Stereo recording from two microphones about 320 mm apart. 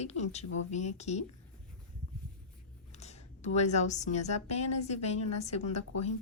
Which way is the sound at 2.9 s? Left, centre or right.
Left.